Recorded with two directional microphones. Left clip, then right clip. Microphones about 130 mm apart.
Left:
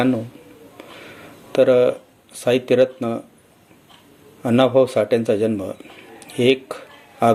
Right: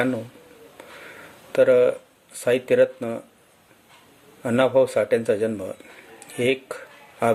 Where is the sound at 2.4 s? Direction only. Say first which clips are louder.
Left 2 dB; 25° right (ahead or behind).